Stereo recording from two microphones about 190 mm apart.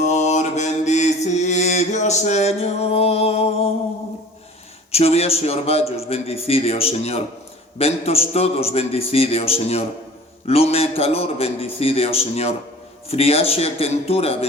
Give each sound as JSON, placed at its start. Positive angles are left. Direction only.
{"t": 0.0, "sound": "mantra", "side_deg": 40}
{"t": 4.9, "sound": "a man's voice", "side_deg": 35}